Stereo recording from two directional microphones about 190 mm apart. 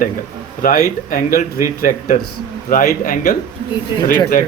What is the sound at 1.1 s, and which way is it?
Speech, 45° left (ahead or behind).